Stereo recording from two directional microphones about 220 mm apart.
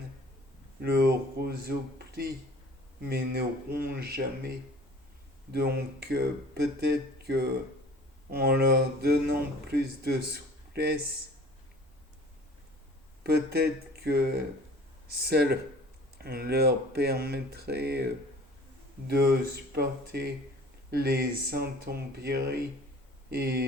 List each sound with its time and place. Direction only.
0.8 s speech: 45° right (ahead or behind)
3.0 s speech: 45° right (ahead or behind)
13.2 s speech: 45° right (ahead or behind)